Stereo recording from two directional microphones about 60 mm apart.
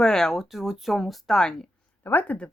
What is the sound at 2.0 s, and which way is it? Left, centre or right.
Speech, left.